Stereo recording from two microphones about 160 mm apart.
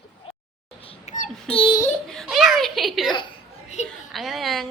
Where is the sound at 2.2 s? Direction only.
Centre (ahead or behind).